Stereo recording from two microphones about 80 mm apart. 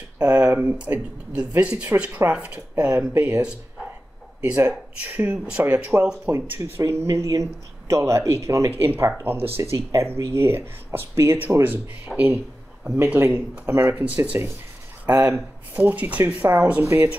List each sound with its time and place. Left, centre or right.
0.2 s speech: right
6.2 s speech: right
6.6 s speech: right
12.1 s speech: centre
12.8 s speech: right
13.7 s speech: right
14.0 s speech: centre